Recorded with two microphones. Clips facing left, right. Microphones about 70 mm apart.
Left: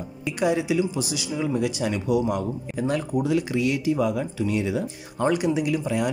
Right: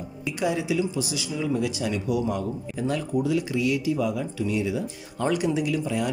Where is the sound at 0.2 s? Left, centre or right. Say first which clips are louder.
Left 3 dB; left.